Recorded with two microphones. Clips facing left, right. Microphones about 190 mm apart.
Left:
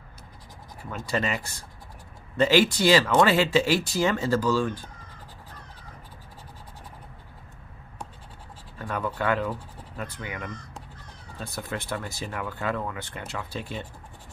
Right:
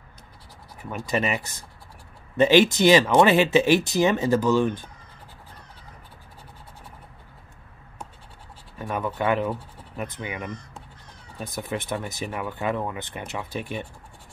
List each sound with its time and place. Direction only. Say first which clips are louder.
0.8 s speech: right 3 dB; 15° right (ahead or behind)
8.7 s speech: right 2 dB; 20° right (ahead or behind)